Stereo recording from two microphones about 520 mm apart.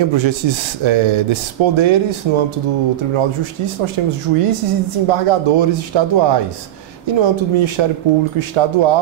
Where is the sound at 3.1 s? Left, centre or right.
Right.